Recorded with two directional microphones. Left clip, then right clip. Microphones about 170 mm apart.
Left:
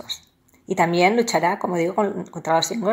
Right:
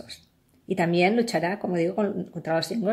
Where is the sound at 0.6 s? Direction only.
25° right (ahead or behind).